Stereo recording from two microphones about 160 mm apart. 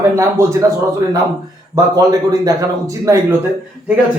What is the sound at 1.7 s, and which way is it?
A man's voice, 20° right (ahead or behind).